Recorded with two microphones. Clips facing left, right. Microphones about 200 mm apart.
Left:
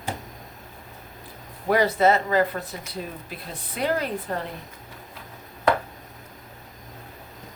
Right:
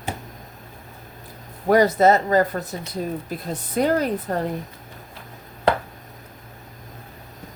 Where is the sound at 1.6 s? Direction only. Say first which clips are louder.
Right 4 dB; 45° right (ahead or behind).